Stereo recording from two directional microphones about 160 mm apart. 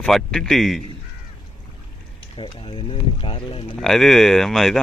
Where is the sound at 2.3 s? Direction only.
30° left (ahead or behind).